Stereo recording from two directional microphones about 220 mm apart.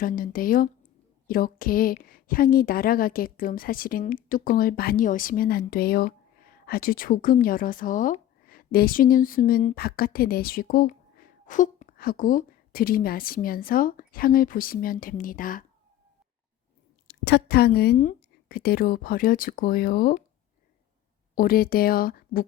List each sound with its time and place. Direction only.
0.0 s a woman's voice: 40° left (ahead or behind)
17.1 s a woman's voice: 50° left (ahead or behind)
21.3 s a woman's voice: 40° left (ahead or behind)